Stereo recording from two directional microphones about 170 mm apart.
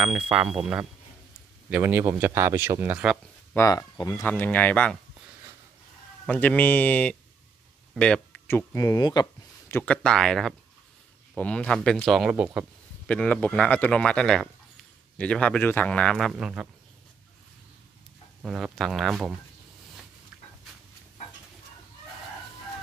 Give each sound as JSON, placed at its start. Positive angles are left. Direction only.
{"t": 0.0, "sound": "speech", "side_deg": -10}
{"t": 3.5, "sound": "speech", "side_deg": 20}
{"t": 4.3, "sound": "speech", "side_deg": 10}
{"t": 6.2, "sound": "speech", "side_deg": 10}
{"t": 9.8, "sound": "a man's voice", "side_deg": 5}
{"t": 13.0, "sound": "a man's voice", "side_deg": 5}
{"t": 18.4, "sound": "a man's voice", "side_deg": -5}